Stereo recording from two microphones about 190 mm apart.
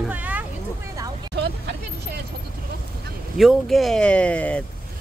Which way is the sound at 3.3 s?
Centre (ahead or behind).